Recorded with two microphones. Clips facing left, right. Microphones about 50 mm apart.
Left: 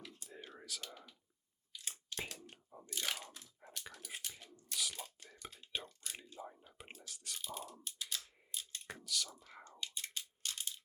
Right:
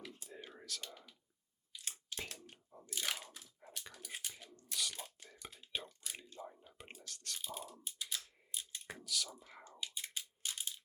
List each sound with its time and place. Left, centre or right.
0.0 s whispering: centre
0.3 s whispering: centre
1.8 s crunch: centre
2.9 s biting: centre
3.8 s whispering: centre
6.1 s whispering: centre
7.3 s computer keyboard: centre
8.5 s a sound: centre
9.0 s whispering: centre